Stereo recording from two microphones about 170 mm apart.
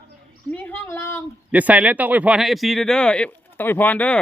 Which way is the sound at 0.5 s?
10° left (ahead or behind).